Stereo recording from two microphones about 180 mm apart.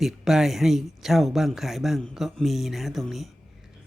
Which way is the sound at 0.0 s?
Centre (ahead or behind).